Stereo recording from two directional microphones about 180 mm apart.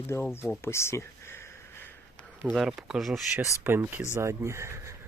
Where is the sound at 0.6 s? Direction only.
15° left (ahead or behind); by 3.4 s centre (ahead or behind).